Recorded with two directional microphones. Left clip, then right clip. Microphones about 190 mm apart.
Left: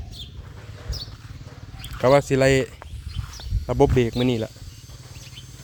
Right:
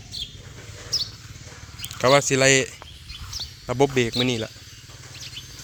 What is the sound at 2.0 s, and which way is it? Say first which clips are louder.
Speech: even; 20° left (ahead or behind).